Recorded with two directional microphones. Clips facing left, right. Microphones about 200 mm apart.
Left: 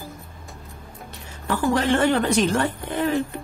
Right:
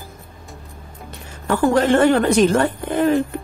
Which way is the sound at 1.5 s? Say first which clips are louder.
Right 5 dB; 50° right (ahead or behind).